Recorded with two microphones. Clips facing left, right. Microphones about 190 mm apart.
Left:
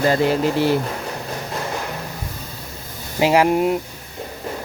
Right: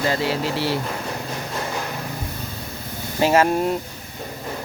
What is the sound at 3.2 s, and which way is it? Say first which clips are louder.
Speech: left 2 dB; 15° left (ahead or behind).